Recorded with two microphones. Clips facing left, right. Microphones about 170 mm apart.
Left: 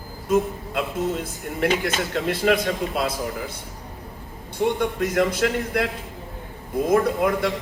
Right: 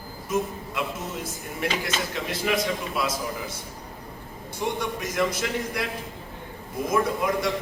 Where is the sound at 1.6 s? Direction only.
55° left (ahead or behind).